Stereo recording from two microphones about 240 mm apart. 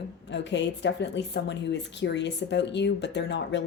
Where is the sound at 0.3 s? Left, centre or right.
Left.